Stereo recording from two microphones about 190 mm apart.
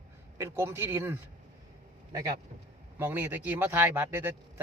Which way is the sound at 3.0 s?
10° right (ahead or behind).